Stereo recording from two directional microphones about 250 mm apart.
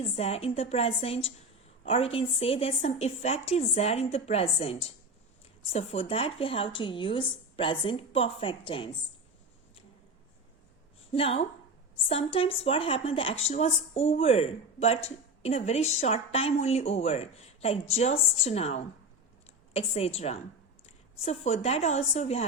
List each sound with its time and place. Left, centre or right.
0.2 s a woman's voice: left
11.1 s a woman's voice: left